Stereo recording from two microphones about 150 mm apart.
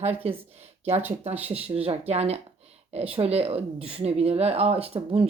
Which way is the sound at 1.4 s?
40° right (ahead or behind).